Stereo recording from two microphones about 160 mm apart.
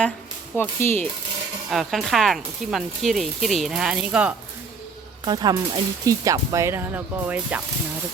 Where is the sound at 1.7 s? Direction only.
Centre (ahead or behind).